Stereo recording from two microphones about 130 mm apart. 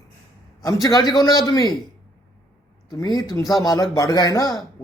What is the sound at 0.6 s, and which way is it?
A man's voice, 25° left (ahead or behind).